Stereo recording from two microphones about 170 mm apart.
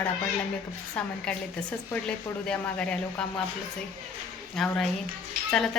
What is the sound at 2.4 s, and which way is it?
Speech, 5° left (ahead or behind).